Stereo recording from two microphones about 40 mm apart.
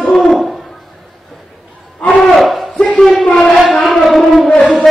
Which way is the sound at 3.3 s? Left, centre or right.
Centre.